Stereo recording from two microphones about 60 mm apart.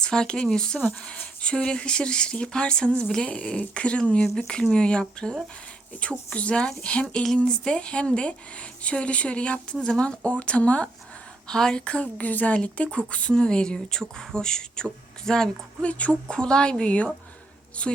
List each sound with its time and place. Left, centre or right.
0.0 s speech: centre
11.4 s speech: centre
15.8 s speech: left